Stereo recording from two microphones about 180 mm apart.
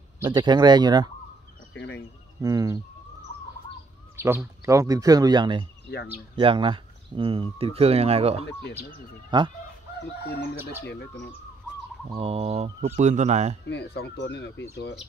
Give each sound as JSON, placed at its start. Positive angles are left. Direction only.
{"t": 0.3, "sound": "speech", "side_deg": -25}
{"t": 1.7, "sound": "speech", "side_deg": 75}
{"t": 2.4, "sound": "speech", "side_deg": -20}
{"t": 4.2, "sound": "speech", "side_deg": -15}
{"t": 10.9, "sound": "speech", "side_deg": 70}
{"t": 12.2, "sound": "speech", "side_deg": -35}
{"t": 13.7, "sound": "speech", "side_deg": 70}